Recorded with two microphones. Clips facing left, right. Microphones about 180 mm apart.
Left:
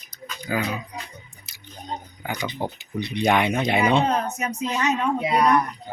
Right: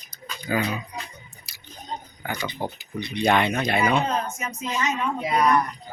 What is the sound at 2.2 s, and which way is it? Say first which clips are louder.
Speech: even; 10° left (ahead or behind).